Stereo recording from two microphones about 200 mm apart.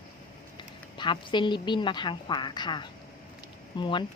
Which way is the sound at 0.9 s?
25° left (ahead or behind).